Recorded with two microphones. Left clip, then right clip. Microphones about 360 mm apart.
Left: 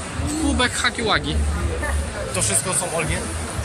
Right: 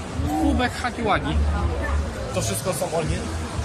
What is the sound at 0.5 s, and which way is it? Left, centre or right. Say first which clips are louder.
Speech: left 4 dB; centre.